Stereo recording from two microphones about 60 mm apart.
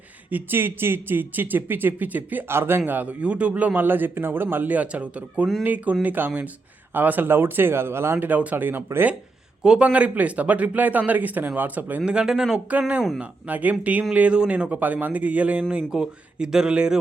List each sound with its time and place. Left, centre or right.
0.3 s a man's voice: right
2.5 s a man's voice: right
8.2 s a man's voice: right
9.6 s speech: centre
12.0 s speech: centre
13.5 s speech: right
15.9 s speech: centre